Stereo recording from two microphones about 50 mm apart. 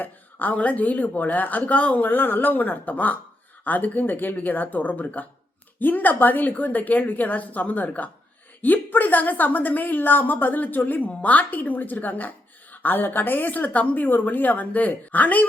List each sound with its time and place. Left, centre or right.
0.0 s a woman's voice: left